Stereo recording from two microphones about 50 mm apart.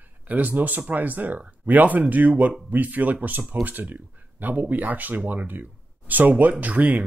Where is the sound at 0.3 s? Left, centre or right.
Right.